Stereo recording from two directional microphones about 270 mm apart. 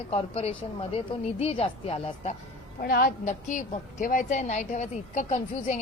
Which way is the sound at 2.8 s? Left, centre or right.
Left.